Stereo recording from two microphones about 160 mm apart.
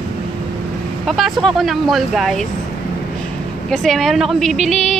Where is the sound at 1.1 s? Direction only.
Centre (ahead or behind).